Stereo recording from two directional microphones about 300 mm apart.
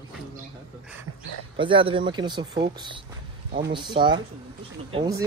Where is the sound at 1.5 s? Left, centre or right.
Centre.